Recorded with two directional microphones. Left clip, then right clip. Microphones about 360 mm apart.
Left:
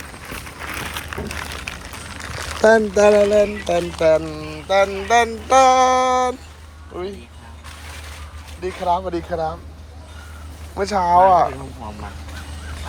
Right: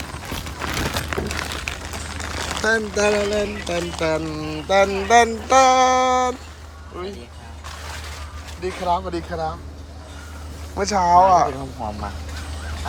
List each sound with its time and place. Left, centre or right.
0.9 s a sound: right
2.6 s speech: centre
8.6 s speech: centre
10.8 s speech: centre